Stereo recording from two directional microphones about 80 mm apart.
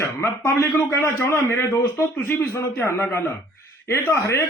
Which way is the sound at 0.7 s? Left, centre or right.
Centre.